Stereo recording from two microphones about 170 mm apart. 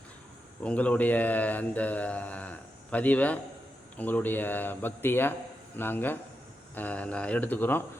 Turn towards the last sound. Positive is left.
turn(degrees=10)  # may be behind; listen again after turning